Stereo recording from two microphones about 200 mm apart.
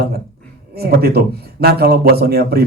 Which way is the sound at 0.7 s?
50° right (ahead or behind).